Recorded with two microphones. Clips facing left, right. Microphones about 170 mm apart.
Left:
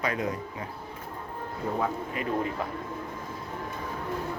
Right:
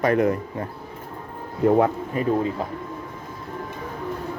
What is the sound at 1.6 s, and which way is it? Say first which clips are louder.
Speech: right 12 dB; 70° right (ahead or behind).